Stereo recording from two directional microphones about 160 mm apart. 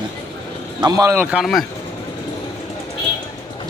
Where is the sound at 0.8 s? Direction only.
25° right (ahead or behind).